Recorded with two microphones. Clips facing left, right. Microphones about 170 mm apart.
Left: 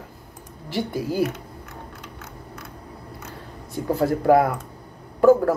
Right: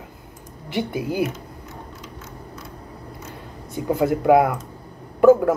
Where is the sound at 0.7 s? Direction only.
55° right (ahead or behind).